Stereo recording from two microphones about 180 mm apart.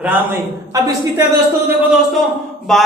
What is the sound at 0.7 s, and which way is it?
Speech, 20° right (ahead or behind).